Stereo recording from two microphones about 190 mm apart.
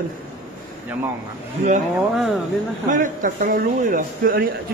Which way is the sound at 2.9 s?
45° right (ahead or behind).